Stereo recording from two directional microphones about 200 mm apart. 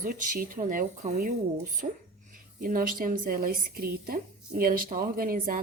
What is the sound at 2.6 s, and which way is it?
A woman's voice, 45° right (ahead or behind).